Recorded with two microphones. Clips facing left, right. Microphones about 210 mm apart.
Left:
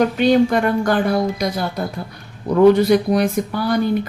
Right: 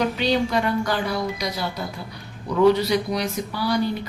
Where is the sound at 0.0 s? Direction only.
50° left (ahead or behind).